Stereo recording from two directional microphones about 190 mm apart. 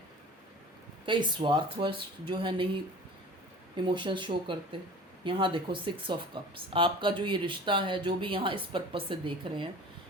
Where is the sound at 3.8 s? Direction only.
25° right (ahead or behind).